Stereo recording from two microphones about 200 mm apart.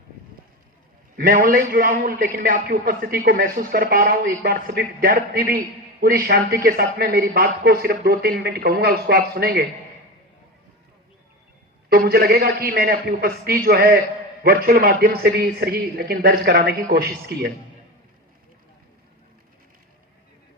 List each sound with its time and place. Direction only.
1.1 s a man's voice: 45° right (ahead or behind)
11.9 s a man's voice: 50° right (ahead or behind)